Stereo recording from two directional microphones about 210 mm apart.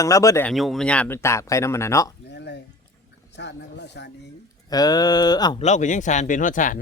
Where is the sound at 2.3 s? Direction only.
55° left (ahead or behind).